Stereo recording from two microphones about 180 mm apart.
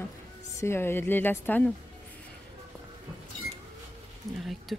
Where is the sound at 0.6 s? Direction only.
15° left (ahead or behind).